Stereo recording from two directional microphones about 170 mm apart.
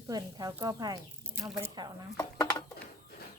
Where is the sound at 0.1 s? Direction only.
25° right (ahead or behind).